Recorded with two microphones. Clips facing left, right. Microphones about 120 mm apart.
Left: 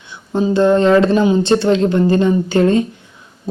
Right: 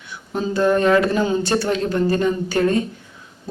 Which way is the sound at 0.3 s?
25° left (ahead or behind).